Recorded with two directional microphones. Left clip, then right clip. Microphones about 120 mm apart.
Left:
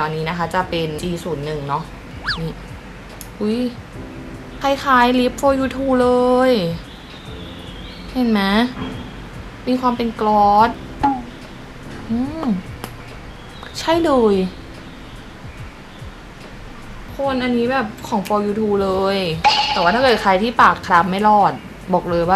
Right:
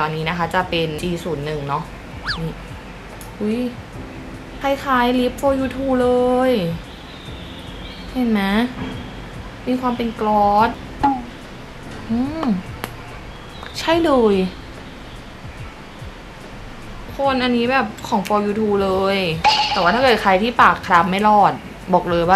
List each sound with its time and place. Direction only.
0.0 s speech: 5° left (ahead or behind)
2.3 s a sound: 5° left (ahead or behind)
3.4 s speech: 15° left (ahead or behind)
8.2 s speech: 15° left (ahead or behind)
9.7 s speech: 15° left (ahead or behind)
12.4 s a sound: 5° right (ahead or behind)
13.7 s speech: centre (ahead or behind)
17.2 s speech: 5° right (ahead or behind)